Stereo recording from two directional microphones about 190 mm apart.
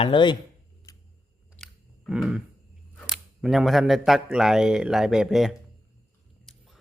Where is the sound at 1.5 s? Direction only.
Centre (ahead or behind).